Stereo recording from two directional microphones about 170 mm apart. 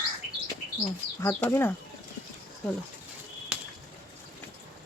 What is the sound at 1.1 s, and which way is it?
Speech, 15° left (ahead or behind).